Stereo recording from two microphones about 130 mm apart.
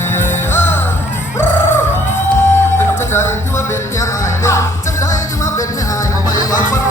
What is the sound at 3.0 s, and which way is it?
Music, 20° left (ahead or behind).